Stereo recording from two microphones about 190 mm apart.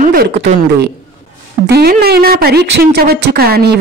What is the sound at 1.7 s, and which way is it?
Speech, 55° right (ahead or behind).